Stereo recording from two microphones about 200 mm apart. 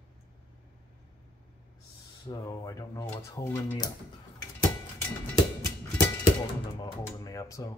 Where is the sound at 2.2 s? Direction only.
15° left (ahead or behind).